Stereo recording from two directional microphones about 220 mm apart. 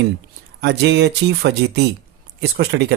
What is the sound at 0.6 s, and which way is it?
Speech, 50° right (ahead or behind).